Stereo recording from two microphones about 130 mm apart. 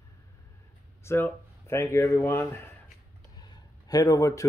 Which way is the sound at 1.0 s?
20° left (ahead or behind).